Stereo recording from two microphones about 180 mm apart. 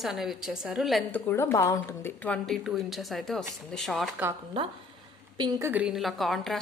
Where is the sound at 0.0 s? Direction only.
Centre (ahead or behind).